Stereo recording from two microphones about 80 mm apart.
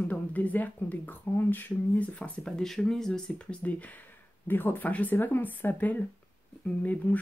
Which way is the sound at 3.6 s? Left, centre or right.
Centre.